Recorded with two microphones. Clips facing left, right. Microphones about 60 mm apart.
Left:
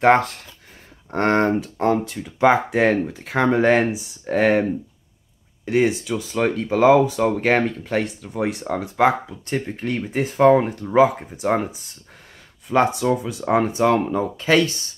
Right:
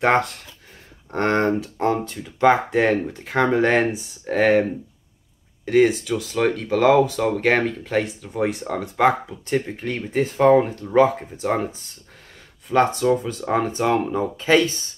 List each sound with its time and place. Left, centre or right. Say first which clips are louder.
0.0 s speech: left 3 dB; centre
5.7 s speech: right 2 dB; centre
14.1 s speech: even; centre